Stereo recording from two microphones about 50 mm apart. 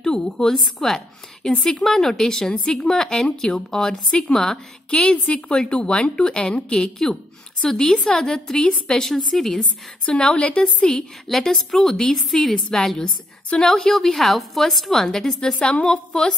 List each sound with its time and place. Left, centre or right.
0.0 s a woman's voice: centre
2.5 s a woman's voice: left
2.8 s a woman's voice: centre
5.0 s a woman's voice: left
9.0 s a woman's voice: centre
9.6 s a woman's voice: centre
11.2 s a woman's voice: centre